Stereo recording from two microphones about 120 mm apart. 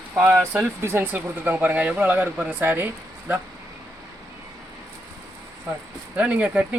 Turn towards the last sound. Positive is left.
turn(degrees=-10)  # may be behind; listen again after turning